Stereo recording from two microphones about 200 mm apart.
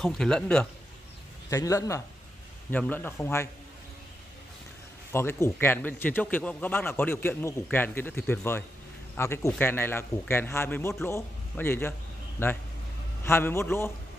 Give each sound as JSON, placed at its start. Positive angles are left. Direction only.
{"t": 0.0, "sound": "speech", "side_deg": 5}
{"t": 1.5, "sound": "a man's voice", "side_deg": 15}
{"t": 5.1, "sound": "a man's voice", "side_deg": 10}